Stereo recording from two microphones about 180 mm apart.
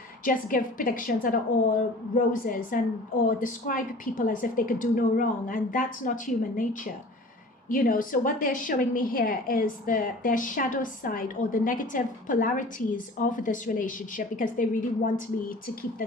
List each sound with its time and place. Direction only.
0.3 s a woman's voice: 50° left (ahead or behind)
7.7 s a woman's voice: 50° left (ahead or behind)